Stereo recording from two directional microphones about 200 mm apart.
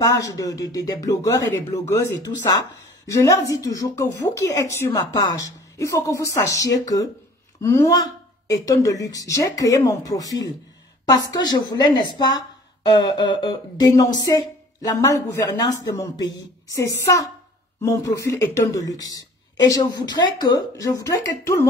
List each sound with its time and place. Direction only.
0.0 s a woman's voice: 15° left (ahead or behind)